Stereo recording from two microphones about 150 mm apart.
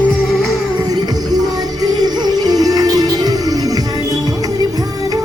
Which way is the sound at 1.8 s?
25° right (ahead or behind).